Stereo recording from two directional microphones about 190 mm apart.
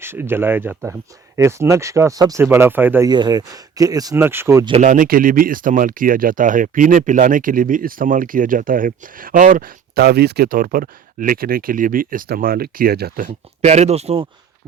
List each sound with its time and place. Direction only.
0.0 s speech: 10° right (ahead or behind)
3.1 s speech: 20° right (ahead or behind)
4.7 s speech: 40° right (ahead or behind)